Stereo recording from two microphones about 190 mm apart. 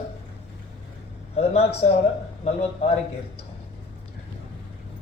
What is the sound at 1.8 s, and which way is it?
Speech, 40° left (ahead or behind).